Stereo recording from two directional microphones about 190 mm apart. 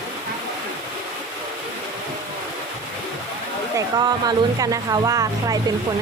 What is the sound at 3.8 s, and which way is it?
Speech, 20° right (ahead or behind).